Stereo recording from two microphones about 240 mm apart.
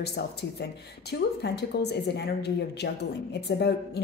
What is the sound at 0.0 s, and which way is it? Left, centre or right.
Speech, left.